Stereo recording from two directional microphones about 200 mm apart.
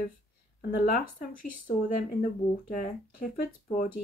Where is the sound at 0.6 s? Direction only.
50° left (ahead or behind).